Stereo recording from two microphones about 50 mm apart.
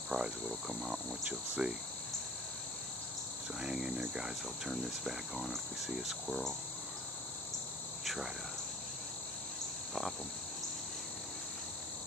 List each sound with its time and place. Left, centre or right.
0.1 s speech: centre
3.6 s speech: centre
8.0 s cricket: centre